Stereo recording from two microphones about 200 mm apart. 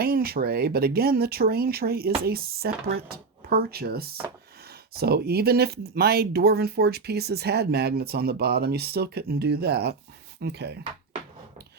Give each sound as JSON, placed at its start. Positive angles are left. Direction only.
{"t": 0.0, "sound": "speech", "side_deg": -50}